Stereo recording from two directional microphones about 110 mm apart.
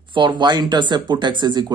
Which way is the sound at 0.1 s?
45° right (ahead or behind).